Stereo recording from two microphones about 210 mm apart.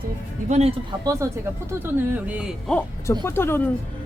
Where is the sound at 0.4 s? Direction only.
35° right (ahead or behind).